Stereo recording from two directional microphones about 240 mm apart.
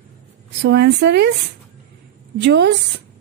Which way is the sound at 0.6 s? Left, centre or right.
Right.